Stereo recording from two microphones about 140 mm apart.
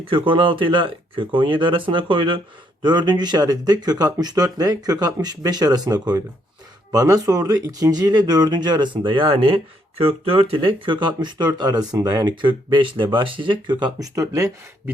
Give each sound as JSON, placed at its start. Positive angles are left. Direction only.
{"t": 0.0, "sound": "speech", "side_deg": -40}